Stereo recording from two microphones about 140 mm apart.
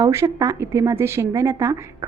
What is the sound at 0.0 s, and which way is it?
A woman's voice, 20° right (ahead or behind).